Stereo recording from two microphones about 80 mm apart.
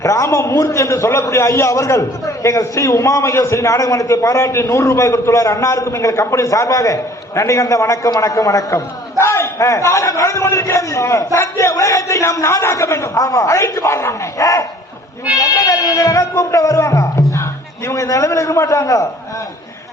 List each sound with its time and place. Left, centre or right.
0.0 s a man's voice: left
9.1 s a man's voice: left